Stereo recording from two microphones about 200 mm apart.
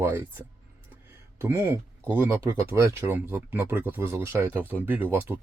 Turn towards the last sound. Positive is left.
turn(degrees=-10)  # may be behind; listen again after turning